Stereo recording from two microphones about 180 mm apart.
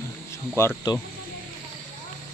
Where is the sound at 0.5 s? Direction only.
15° left (ahead or behind).